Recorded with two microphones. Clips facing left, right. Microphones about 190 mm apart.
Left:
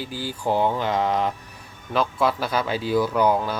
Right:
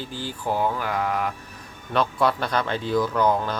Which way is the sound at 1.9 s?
Centre (ahead or behind).